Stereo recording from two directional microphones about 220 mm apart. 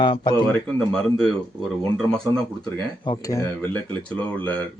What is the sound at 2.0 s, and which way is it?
Speech, 5° left (ahead or behind).